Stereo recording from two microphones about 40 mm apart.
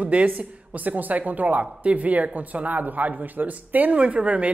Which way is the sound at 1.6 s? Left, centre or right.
Right.